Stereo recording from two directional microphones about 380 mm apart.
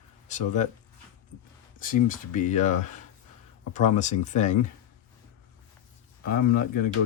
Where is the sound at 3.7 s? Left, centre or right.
Centre.